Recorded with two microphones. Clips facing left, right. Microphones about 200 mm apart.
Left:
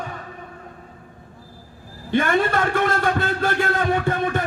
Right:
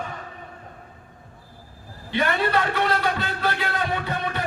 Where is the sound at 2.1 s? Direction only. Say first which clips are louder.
Left 4 dB; 50° left (ahead or behind).